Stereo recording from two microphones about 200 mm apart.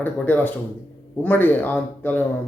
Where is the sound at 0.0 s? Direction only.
10° left (ahead or behind).